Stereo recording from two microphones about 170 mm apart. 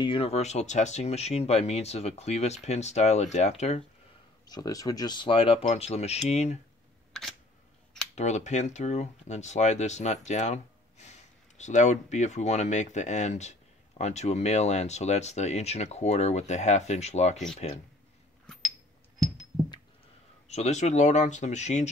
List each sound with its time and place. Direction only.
0.0 s speech: 30° left (ahead or behind)
4.5 s speech: 20° left (ahead or behind); by 6.6 s 40° left (ahead or behind)
8.1 s speech: 40° left (ahead or behind)
20.4 s speech: 40° left (ahead or behind)